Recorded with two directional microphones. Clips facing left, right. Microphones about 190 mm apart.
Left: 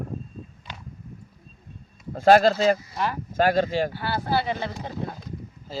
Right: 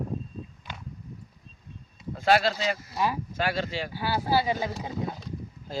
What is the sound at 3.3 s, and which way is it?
Speech, 45° left (ahead or behind).